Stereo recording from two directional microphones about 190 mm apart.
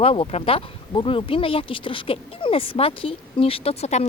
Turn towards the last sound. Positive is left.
turn(degrees=35)  # may be behind; listen again after turning